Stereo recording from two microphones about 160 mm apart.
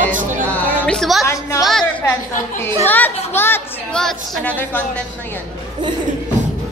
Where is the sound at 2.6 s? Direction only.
10° left (ahead or behind).